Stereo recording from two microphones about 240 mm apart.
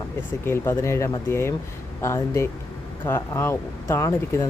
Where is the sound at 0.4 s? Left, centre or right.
Centre.